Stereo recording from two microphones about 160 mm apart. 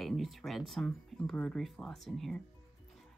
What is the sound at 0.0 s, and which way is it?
Speech, centre (ahead or behind).